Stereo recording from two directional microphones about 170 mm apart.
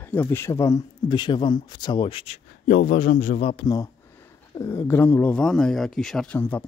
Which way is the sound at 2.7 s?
55° left (ahead or behind).